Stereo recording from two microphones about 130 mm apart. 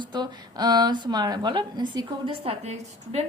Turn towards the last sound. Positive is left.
turn(degrees=-55)  # may be behind; listen again after turning